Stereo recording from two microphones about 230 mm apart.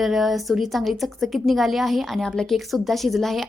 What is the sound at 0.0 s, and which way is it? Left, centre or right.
A woman's voice, centre.